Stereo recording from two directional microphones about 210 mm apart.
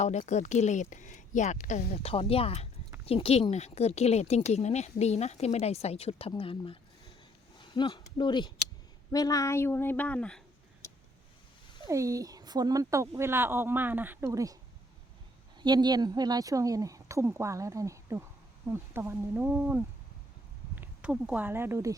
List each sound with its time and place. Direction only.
0.0 s speech: 35° left (ahead or behind); by 10.4 s 5° left (ahead or behind)
11.9 s speech: 15° right (ahead or behind)
15.6 s speech: 20° right (ahead or behind)